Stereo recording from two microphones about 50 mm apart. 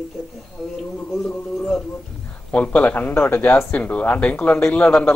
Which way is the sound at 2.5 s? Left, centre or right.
Left.